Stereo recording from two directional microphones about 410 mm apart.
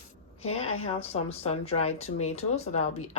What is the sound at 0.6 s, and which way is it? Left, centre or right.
Speech, left.